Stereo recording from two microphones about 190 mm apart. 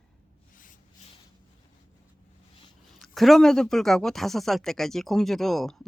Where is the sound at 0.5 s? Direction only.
45° left (ahead or behind).